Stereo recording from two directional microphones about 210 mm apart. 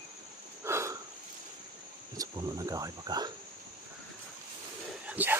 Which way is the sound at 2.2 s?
15° right (ahead or behind).